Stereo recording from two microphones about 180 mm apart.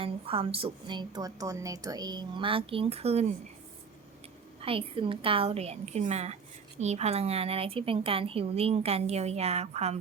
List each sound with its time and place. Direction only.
0.0 s a woman's voice: 30° right (ahead or behind)
4.6 s speech: 30° right (ahead or behind)